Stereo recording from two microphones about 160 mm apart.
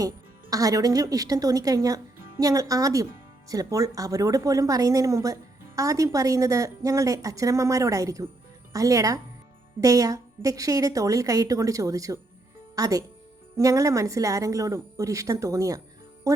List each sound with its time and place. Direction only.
0.5 s a woman's voice: 20° right (ahead or behind)